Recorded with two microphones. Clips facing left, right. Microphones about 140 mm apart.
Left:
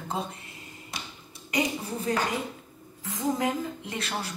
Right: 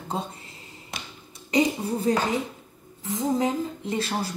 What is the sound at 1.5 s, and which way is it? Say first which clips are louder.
A man's voice: right 6 dB; 25° right (ahead or behind).